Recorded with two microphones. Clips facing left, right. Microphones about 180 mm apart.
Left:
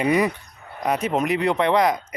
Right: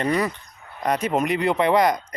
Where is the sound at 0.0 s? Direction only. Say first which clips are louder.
Left 3 dB; 10° left (ahead or behind).